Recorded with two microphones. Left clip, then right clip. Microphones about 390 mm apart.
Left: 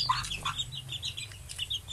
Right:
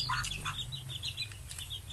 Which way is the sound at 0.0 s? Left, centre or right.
Centre.